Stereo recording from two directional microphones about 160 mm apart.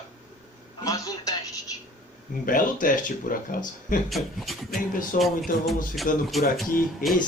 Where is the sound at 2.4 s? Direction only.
60° left (ahead or behind).